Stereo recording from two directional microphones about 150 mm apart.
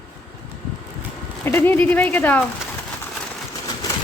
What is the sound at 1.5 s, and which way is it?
Speech, 15° left (ahead or behind).